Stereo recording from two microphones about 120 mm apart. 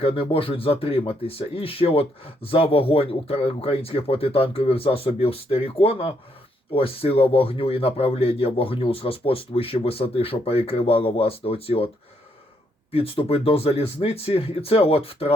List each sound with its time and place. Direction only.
0.0 s speech: 50° left (ahead or behind)
12.9 s speech: 55° left (ahead or behind)